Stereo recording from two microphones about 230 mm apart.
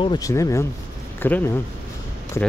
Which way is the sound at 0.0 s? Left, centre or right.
Centre.